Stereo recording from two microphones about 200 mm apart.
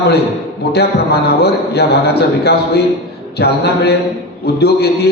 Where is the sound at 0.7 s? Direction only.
55° left (ahead or behind).